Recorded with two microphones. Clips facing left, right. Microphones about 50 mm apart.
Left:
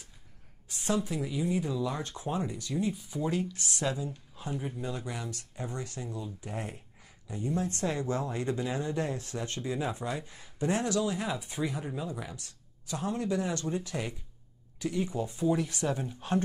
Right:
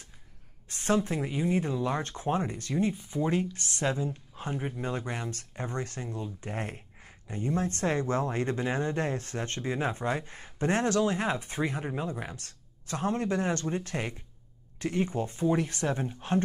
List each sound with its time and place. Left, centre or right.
0.7 s speech: right